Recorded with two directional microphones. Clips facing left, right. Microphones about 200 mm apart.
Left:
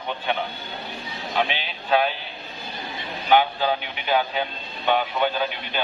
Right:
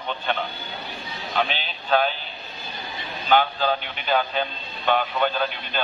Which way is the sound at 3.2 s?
10° left (ahead or behind).